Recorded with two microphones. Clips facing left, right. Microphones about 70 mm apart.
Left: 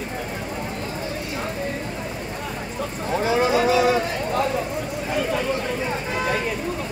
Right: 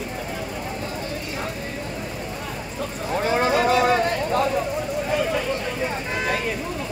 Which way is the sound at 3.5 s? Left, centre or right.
Right.